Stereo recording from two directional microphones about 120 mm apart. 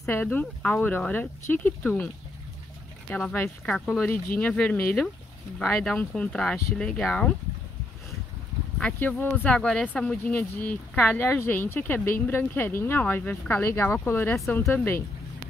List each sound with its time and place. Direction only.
0.0 s speech: 15° left (ahead or behind)
3.1 s speech: 5° left (ahead or behind)
8.7 s speech: 15° left (ahead or behind)